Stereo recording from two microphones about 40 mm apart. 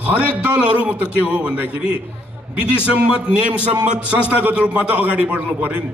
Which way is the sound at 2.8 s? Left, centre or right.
Right.